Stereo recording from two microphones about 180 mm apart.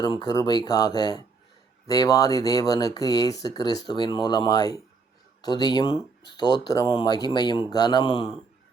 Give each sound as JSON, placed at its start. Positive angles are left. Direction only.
{"t": 0.0, "sound": "speech", "side_deg": 25}